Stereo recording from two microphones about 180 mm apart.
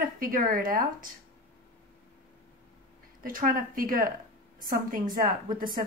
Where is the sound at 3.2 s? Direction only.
50° right (ahead or behind).